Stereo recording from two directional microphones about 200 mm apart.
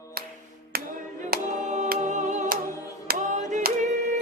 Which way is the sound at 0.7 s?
50° right (ahead or behind).